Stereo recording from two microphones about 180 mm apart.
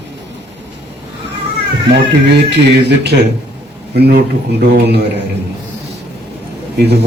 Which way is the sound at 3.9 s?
60° right (ahead or behind).